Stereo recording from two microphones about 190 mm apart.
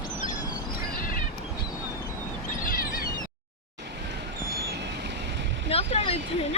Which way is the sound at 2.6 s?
50° left (ahead or behind).